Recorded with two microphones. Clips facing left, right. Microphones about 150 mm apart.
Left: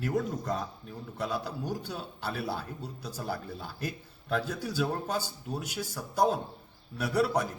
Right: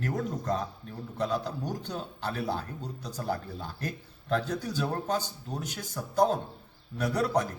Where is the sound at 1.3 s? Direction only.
10° left (ahead or behind).